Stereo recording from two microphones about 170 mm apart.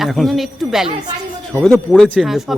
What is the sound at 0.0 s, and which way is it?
Speech, centre (ahead or behind).